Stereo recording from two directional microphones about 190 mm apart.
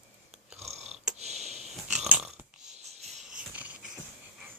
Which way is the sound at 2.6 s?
35° right (ahead or behind).